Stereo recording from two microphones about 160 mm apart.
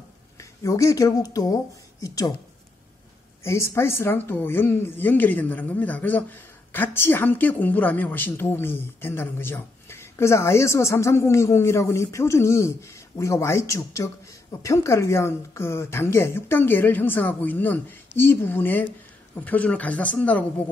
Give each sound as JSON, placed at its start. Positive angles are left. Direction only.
{"t": 0.4, "sound": "speech", "side_deg": 20}
{"t": 3.4, "sound": "a woman's voice", "side_deg": 15}